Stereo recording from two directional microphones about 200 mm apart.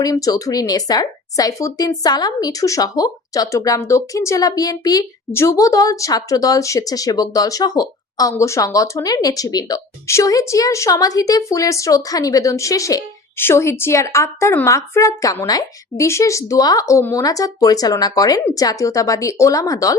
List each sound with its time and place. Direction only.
0.0 s a woman's voice: 20° left (ahead or behind)